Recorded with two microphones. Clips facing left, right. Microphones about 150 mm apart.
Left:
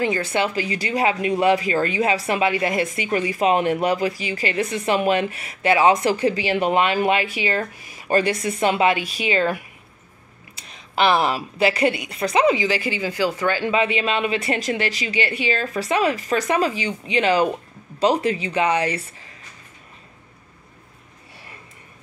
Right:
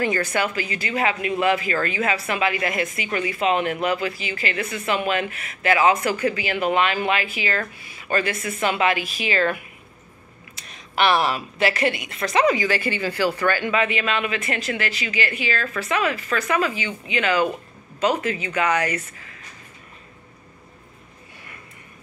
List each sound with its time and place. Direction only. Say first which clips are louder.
0.0 s speech: left 1 dB; 20° left (ahead or behind)
10.7 s a woman's voice: left 1 dB; 25° left (ahead or behind)